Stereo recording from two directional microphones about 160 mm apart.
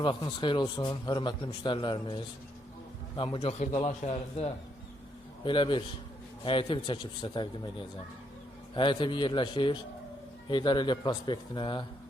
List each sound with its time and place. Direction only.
0.0 s a man's voice: 30° left (ahead or behind)